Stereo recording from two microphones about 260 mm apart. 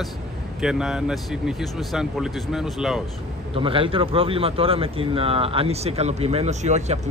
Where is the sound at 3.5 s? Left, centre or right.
Centre.